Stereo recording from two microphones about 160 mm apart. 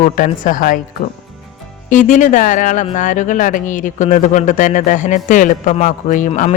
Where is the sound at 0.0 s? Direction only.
60° left (ahead or behind).